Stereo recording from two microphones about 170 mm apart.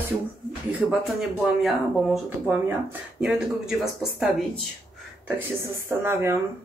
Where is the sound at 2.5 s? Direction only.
15° right (ahead or behind).